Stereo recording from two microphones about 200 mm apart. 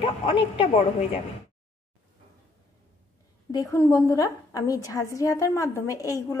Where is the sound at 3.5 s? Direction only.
15° left (ahead or behind).